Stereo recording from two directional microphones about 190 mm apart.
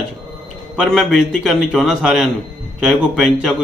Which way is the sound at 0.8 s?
Centre (ahead or behind).